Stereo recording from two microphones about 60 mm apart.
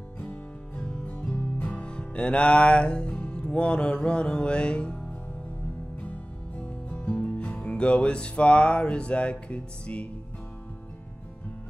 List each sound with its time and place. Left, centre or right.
0.2 s music: left
6.6 s music: centre